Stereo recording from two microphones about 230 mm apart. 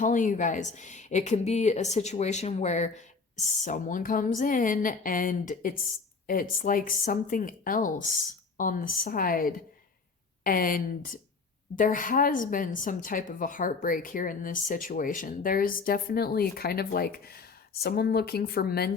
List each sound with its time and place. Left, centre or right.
0.0 s a woman's voice: left